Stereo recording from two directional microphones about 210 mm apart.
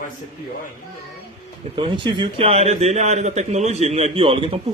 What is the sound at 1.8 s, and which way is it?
A man's voice, 25° right (ahead or behind).